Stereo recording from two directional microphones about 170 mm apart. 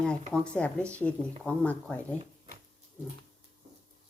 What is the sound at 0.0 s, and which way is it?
Speech, 5° left (ahead or behind).